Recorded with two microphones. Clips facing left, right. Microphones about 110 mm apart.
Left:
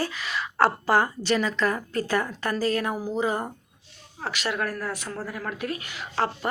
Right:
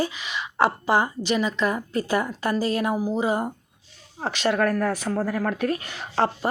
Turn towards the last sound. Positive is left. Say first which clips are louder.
# right 4 dB
turn(degrees=-35)  # may be behind; listen again after turning